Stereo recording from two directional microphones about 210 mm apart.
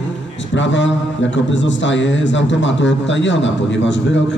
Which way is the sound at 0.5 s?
60° left (ahead or behind).